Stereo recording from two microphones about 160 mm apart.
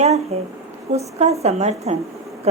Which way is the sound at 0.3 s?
40° right (ahead or behind).